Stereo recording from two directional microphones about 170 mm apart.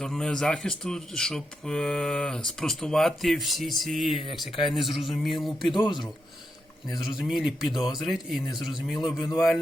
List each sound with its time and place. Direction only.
0.0 s speech: 5° left (ahead or behind)
4.2 s speech: 30° left (ahead or behind)
4.7 s speech: centre (ahead or behind)
5.7 s speech: 30° left (ahead or behind)
7.2 s speech: centre (ahead or behind)
9.1 s speech: 20° left (ahead or behind)